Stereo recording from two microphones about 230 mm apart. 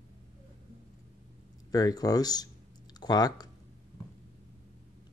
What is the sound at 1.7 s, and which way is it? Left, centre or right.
Speech, centre.